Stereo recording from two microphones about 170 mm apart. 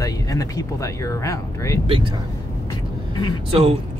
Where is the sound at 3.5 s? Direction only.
35° right (ahead or behind).